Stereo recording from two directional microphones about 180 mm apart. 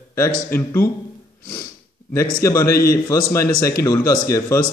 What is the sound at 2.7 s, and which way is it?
A man's voice, 55° left (ahead or behind).